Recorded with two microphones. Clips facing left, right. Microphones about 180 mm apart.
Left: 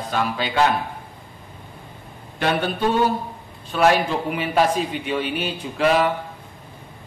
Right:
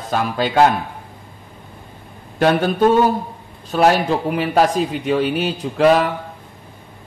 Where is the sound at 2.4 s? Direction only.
45° right (ahead or behind).